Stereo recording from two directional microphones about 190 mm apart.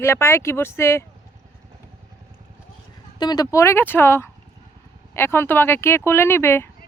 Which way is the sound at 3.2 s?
20° left (ahead or behind).